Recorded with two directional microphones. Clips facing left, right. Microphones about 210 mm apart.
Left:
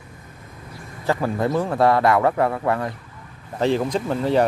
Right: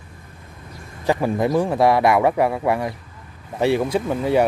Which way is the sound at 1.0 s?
15° right (ahead or behind).